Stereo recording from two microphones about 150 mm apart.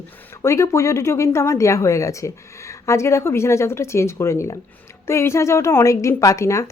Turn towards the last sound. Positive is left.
turn(degrees=20)  # may be behind; listen again after turning